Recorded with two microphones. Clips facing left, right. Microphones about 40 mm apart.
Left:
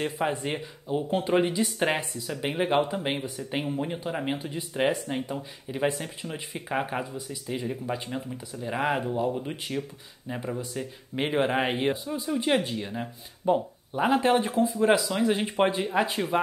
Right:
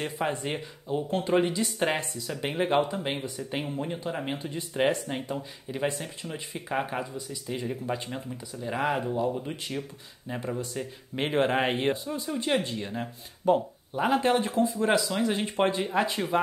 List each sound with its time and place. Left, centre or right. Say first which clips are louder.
0.0 s speech: left 2 dB; centre
12.8 s speech: even; centre
13.9 s speech: left 2 dB; centre